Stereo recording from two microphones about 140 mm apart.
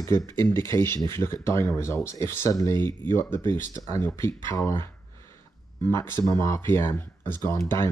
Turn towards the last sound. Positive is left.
turn(degrees=20)  # may be behind; listen again after turning